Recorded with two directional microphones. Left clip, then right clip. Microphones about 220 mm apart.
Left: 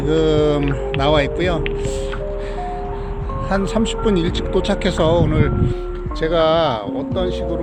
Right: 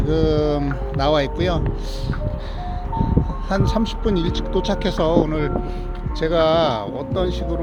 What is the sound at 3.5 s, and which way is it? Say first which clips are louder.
Speech: left 4 dB; 15° right (ahead or behind).